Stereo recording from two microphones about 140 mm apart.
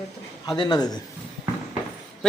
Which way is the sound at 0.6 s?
30° left (ahead or behind).